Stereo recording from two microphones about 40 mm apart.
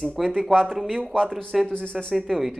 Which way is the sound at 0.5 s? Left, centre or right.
Centre.